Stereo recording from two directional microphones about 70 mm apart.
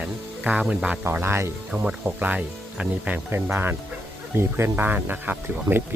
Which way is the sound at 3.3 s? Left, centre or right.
Right.